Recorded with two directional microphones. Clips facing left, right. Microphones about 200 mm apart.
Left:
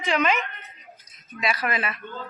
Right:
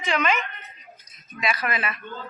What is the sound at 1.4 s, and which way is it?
Speech, 35° left (ahead or behind).